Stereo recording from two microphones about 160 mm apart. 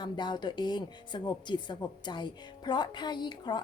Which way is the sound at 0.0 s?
25° left (ahead or behind).